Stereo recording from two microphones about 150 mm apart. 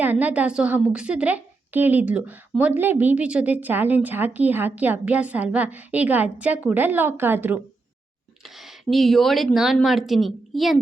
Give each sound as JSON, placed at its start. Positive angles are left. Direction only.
{"t": 0.0, "sound": "a woman's voice", "side_deg": -10}
{"t": 8.4, "sound": "speech", "side_deg": 0}